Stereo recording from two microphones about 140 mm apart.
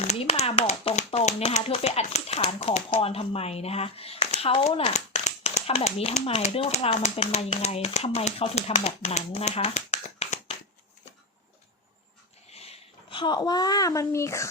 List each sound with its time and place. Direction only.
0.0 s speech: 45° left (ahead or behind)
4.9 s speech: 55° left (ahead or behind)
12.5 s a child's voice: 45° left (ahead or behind); by 14.4 s 20° left (ahead or behind)